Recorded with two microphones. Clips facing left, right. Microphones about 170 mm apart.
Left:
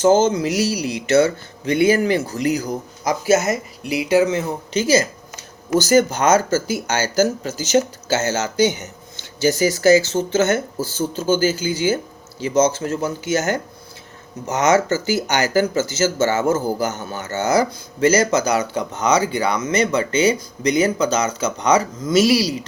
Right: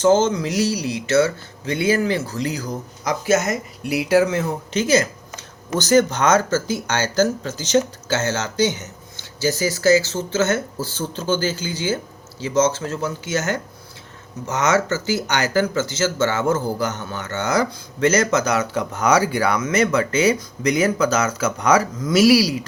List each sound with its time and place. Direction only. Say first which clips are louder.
0.0 s speech: left 1 dB; 10° left (ahead or behind)
16.1 s speech: left 1 dB; 45° left (ahead or behind)
18.0 s speech: left 2 dB; centre (ahead or behind)